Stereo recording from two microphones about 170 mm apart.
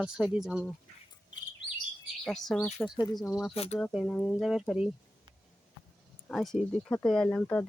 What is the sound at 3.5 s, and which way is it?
Speech, 35° left (ahead or behind).